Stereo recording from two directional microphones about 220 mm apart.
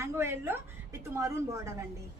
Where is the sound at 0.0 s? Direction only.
10° right (ahead or behind).